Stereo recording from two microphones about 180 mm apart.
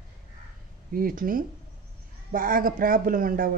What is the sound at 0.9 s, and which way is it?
Speech, 50° right (ahead or behind).